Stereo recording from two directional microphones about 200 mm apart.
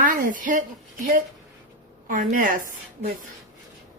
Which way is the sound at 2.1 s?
40° right (ahead or behind).